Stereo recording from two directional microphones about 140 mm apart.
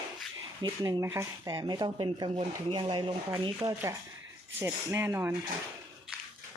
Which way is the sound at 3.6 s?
20° right (ahead or behind).